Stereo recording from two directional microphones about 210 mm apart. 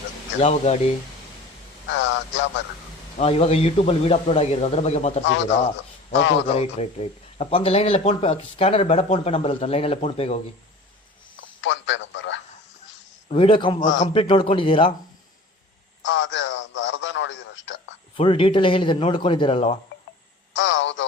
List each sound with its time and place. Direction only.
0.4 s speech: 30° left (ahead or behind)
1.9 s speech: 60° left (ahead or behind)
3.2 s speech: 30° left (ahead or behind)
5.2 s speech: 60° left (ahead or behind)
6.5 s speech: 30° left (ahead or behind)
11.3 s telephone: 60° left (ahead or behind)
13.2 s speech: 25° left (ahead or behind)
16.0 s radio: 60° left (ahead or behind)
18.2 s speech: 25° left (ahead or behind)
20.6 s a sound: 60° left (ahead or behind)